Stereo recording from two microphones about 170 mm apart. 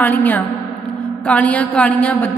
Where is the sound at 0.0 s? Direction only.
10° left (ahead or behind).